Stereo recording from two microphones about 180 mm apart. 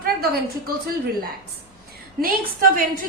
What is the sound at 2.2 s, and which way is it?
Speech, 55° right (ahead or behind).